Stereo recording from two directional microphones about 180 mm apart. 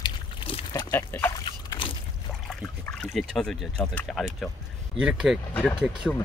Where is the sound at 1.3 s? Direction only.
30° left (ahead or behind).